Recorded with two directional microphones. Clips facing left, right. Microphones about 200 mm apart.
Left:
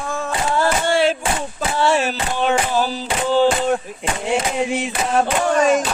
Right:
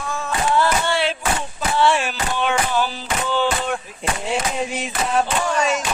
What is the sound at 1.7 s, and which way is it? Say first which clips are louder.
Music: left 1 dB; 40° left (ahead or behind).